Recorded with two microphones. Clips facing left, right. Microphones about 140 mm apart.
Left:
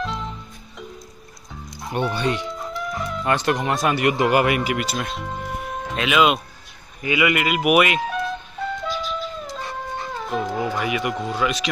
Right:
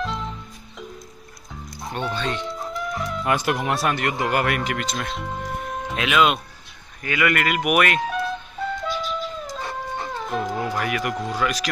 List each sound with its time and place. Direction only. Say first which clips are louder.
0.0 s music: even; centre (ahead or behind)
1.7 s speech: left 4 dB; 10° left (ahead or behind)
2.4 s music: even; centre (ahead or behind)
3.3 s speech: left 1 dB; 5° right (ahead or behind)
4.0 s speech: left 5 dB; 15° left (ahead or behind)
7.0 s music: left 2 dB; 10° left (ahead or behind)